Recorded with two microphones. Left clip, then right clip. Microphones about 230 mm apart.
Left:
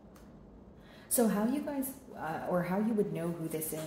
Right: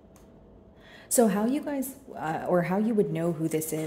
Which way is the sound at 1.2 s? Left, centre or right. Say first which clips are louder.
Right 7 dB; right.